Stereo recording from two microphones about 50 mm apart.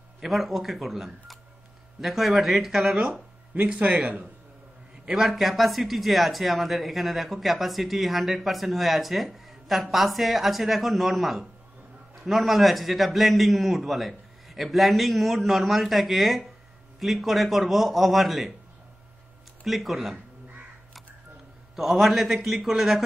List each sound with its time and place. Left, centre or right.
0.2 s speech: centre
3.8 s a man's voice: right
5.0 s speech: centre
19.6 s speech: centre
21.7 s speech: centre